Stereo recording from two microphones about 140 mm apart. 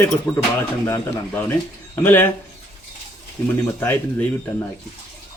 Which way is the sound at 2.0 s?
15° left (ahead or behind).